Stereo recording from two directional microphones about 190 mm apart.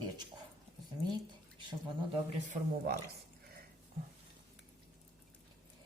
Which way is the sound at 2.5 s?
55° right (ahead or behind).